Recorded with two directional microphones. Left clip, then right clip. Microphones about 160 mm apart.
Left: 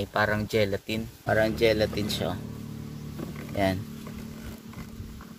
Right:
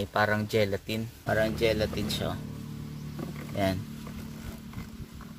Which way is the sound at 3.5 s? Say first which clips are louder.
Left 3 dB; 20° left (ahead or behind).